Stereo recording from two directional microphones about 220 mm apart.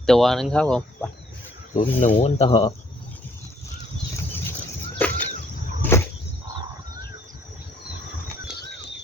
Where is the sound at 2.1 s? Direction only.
30° left (ahead or behind).